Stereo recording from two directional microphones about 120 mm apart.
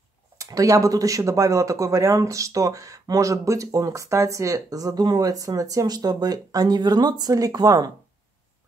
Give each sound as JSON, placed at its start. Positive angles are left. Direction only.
{"t": 0.4, "sound": "speech", "side_deg": -30}